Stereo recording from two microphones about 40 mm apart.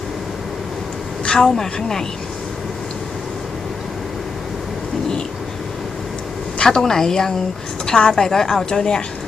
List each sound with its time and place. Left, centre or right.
1.2 s a woman's voice: left
6.6 s a woman's voice: centre